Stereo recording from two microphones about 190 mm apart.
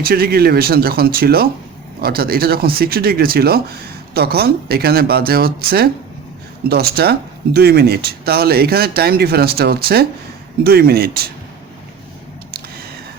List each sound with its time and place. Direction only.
0.0 s speech: 50° right (ahead or behind)